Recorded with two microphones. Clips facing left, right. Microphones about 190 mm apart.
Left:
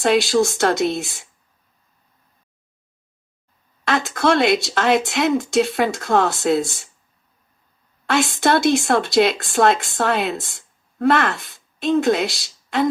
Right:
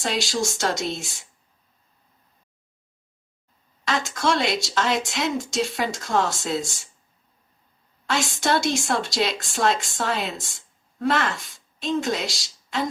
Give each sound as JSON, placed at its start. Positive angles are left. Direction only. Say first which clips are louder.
{"t": 0.0, "sound": "speech", "louder": "left 9 dB", "side_deg": 60}
{"t": 3.8, "sound": "speech", "louder": "left 5 dB", "side_deg": 60}
{"t": 8.0, "sound": "a woman's voice", "louder": "left 6 dB", "side_deg": 60}